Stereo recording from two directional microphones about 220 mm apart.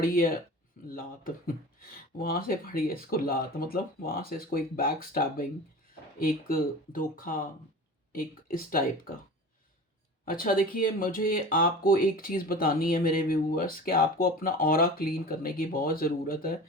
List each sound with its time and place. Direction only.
0.0 s speech: 40° left (ahead or behind)
10.2 s speech: 40° left (ahead or behind)